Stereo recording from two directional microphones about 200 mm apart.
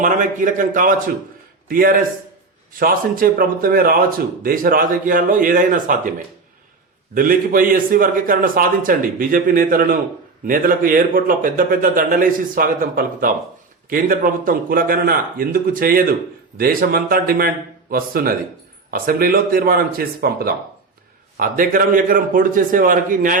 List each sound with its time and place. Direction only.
0.0 s a man's voice: 40° right (ahead or behind)